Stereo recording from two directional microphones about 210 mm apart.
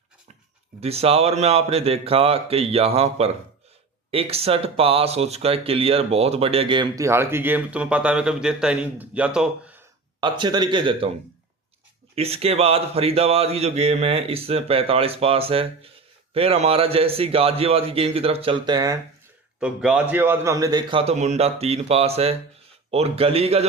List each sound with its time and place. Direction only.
0.8 s speech: 30° right (ahead or behind); by 9.7 s 5° right (ahead or behind)
10.2 s speech: 20° right (ahead or behind)
12.1 s speech: 30° right (ahead or behind)
19.5 s speech: 5° right (ahead or behind); by 23.6 s 30° right (ahead or behind)